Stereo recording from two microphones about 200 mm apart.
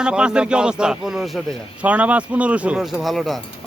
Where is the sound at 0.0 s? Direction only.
5° right (ahead or behind).